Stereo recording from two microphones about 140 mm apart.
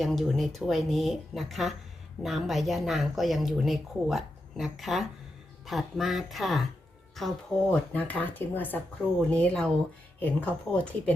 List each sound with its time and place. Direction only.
0.0 s speech: centre (ahead or behind)
7.9 s speech: 10° left (ahead or behind)